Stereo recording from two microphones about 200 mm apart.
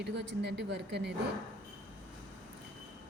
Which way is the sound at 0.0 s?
60° right (ahead or behind).